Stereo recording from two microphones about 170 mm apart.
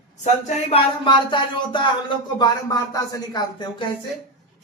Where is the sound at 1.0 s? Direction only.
25° left (ahead or behind).